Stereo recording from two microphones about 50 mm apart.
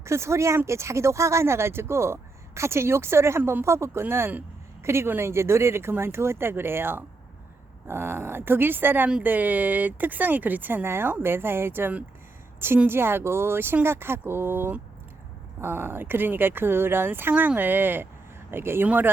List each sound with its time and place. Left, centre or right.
0.0 s speech: right
5.0 s speech: right
5.3 s speech: right
10.8 s a woman's voice: right
18.9 s speech: right